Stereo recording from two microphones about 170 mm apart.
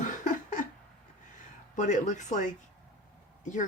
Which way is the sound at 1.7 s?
45° left (ahead or behind).